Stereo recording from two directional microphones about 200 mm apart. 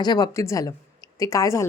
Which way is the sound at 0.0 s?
20° left (ahead or behind).